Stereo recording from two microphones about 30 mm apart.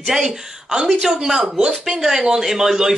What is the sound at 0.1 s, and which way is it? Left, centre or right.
Speech, centre.